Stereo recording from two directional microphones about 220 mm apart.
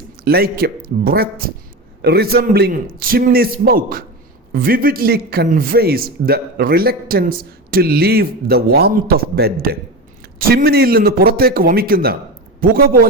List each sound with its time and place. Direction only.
0.3 s a man's voice: 45° right (ahead or behind)